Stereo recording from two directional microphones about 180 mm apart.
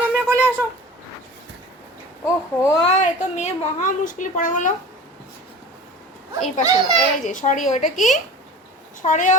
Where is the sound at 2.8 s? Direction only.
40° left (ahead or behind).